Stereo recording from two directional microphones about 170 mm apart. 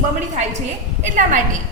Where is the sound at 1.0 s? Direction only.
45° right (ahead or behind).